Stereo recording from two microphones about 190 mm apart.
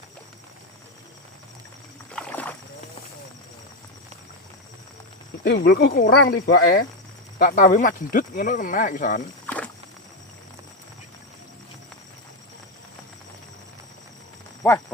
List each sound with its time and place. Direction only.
2.1 s rowboat: 10° left (ahead or behind)
5.4 s speech: 65° left (ahead or behind); by 9.2 s 45° left (ahead or behind)
9.5 s a sound: 10° left (ahead or behind)
14.6 s speech: 10° left (ahead or behind)